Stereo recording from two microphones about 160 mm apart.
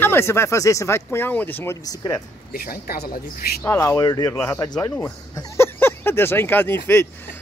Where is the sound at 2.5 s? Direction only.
70° left (ahead or behind).